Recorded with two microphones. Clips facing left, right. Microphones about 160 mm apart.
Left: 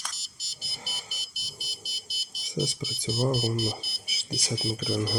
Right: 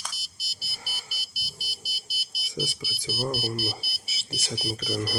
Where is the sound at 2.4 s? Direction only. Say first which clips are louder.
Left 3 dB; 20° left (ahead or behind).